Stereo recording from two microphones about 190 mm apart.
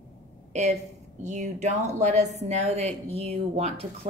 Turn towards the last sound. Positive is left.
turn(degrees=-35)  # may be behind; listen again after turning